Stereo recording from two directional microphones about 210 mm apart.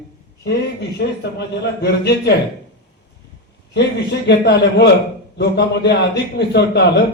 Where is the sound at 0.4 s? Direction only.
55° left (ahead or behind).